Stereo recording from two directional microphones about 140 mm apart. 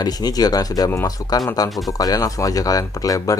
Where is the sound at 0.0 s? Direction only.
30° left (ahead or behind).